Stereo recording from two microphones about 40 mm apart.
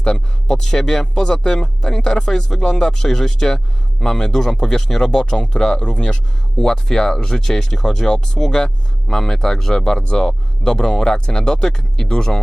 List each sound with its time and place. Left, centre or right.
0.0 s speech: left